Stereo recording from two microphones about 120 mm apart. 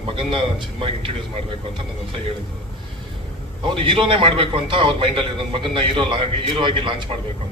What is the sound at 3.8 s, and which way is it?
A man's voice, 45° right (ahead or behind).